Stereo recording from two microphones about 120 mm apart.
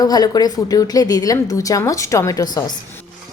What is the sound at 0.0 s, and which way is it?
A woman's voice, 35° left (ahead or behind).